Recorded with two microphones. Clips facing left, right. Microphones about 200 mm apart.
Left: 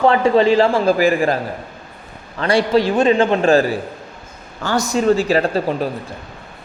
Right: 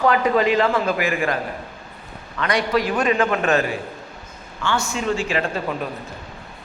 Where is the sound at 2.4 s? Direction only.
30° left (ahead or behind).